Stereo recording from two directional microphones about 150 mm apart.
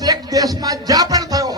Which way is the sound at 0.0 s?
25° right (ahead or behind).